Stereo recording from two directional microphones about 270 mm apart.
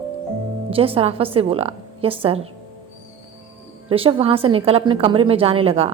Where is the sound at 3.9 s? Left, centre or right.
Right.